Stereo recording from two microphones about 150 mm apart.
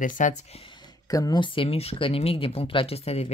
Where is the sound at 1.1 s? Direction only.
25° left (ahead or behind).